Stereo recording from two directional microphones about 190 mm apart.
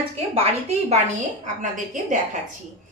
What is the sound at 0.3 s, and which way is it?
A woman's voice, 35° right (ahead or behind).